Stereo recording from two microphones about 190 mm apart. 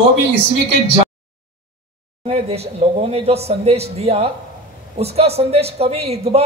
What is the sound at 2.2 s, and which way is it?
A man's voice, 35° right (ahead or behind).